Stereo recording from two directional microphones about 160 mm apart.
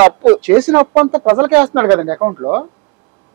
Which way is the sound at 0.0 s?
10° right (ahead or behind).